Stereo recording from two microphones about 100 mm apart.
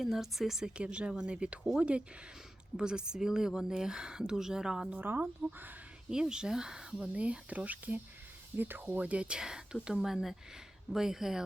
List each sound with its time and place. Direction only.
0.0 s speech: 5° right (ahead or behind)
4.9 s speech: 20° right (ahead or behind)
6.1 s speech: 5° right (ahead or behind)